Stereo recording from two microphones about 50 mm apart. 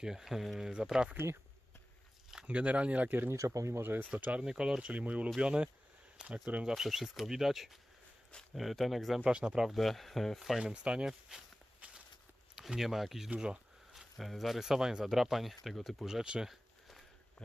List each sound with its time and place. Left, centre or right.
0.0 s speech: centre
1.1 s speech: right
2.5 s speech: right
3.3 s speech: right
4.2 s speech: right
4.4 s speech: centre
4.8 s speech: right
6.7 s speech: centre
9.2 s speech: right
9.6 s speech: centre
10.6 s speech: centre
11.8 s walk: right
12.7 s speech: centre
16.0 s speech: centre